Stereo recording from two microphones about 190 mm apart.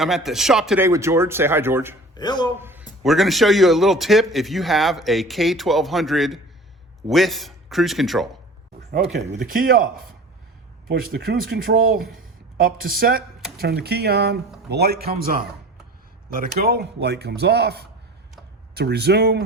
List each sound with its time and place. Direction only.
0.0 s a man's voice: centre (ahead or behind)
0.9 s speech: 15° right (ahead or behind)
2.1 s speech: 20° left (ahead or behind)
2.6 s a sound: 10° right (ahead or behind)
3.0 s a man's voice: centre (ahead or behind)
9.5 s speech: 50° right (ahead or behind)
11.1 s speech: 60° right (ahead or behind)